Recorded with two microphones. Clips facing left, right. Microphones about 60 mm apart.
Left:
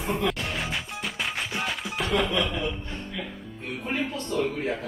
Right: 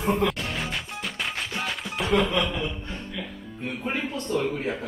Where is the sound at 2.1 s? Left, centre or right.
Right.